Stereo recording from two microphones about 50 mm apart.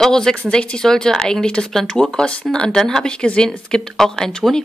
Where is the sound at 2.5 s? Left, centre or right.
Centre.